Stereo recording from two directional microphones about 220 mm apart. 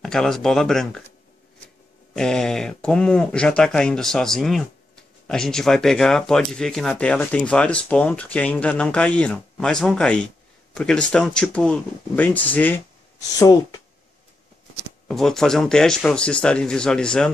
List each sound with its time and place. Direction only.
0.0 s speech: centre (ahead or behind)
2.1 s speech: 5° left (ahead or behind)
15.0 s speech: centre (ahead or behind)